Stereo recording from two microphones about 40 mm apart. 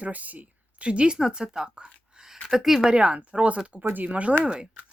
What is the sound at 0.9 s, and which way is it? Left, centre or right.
A woman's voice, right.